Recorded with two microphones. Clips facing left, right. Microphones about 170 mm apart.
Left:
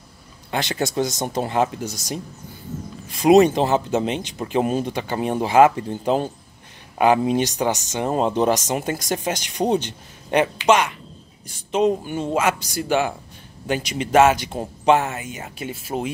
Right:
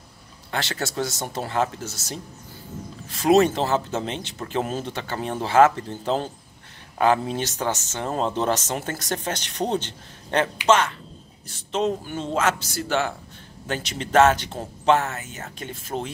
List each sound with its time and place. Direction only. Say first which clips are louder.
0.5 s speech: left 4 dB; 15° left (ahead or behind)